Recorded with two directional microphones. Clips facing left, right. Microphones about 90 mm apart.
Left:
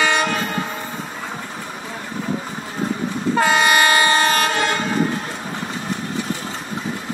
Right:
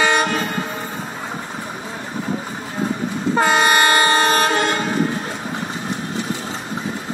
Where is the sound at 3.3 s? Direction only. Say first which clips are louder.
Right 1 dB; 35° right (ahead or behind).